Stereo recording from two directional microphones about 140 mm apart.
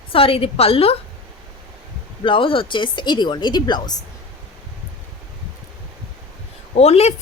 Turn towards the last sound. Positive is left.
turn(degrees=50)  # may be behind; listen again after turning